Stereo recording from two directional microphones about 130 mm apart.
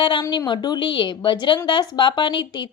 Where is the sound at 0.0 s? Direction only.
35° left (ahead or behind).